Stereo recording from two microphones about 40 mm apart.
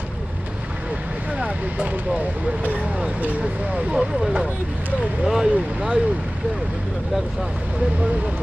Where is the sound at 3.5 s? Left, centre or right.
Right; by 5.5 s centre.